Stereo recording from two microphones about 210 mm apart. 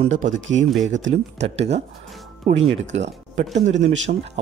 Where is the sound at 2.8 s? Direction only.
30° right (ahead or behind).